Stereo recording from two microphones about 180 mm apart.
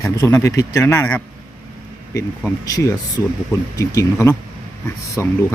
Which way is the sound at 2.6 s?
20° left (ahead or behind).